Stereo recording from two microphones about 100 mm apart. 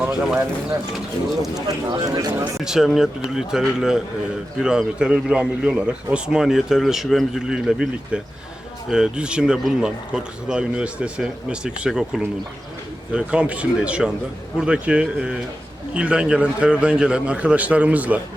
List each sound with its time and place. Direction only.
0.0 s speech: 5° right (ahead or behind)
1.5 s speech: 40° right (ahead or behind)
2.6 s speech: 5° right (ahead or behind)